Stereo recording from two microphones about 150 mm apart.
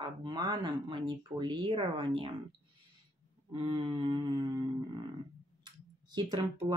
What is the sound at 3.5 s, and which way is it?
Speech, 35° right (ahead or behind).